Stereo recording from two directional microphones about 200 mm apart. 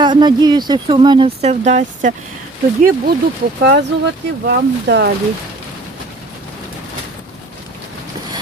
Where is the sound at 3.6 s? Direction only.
55° right (ahead or behind).